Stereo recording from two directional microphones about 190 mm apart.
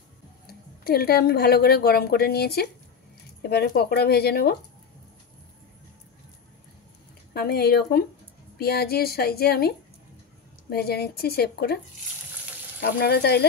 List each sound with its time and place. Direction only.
0.5 s a woman's voice: 55° left (ahead or behind)
7.3 s a woman's voice: 55° left (ahead or behind)
12.9 s a woman's voice: 55° left (ahead or behind)